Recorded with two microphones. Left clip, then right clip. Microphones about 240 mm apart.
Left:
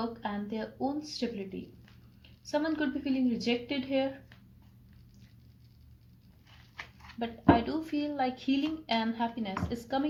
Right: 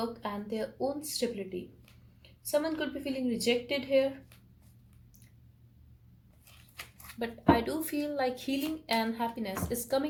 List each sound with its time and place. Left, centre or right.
0.0 s speech: right
2.5 s speech: right
7.1 s speech: right